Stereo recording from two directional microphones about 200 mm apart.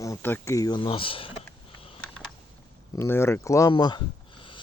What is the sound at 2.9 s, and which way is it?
Speech, 10° left (ahead or behind).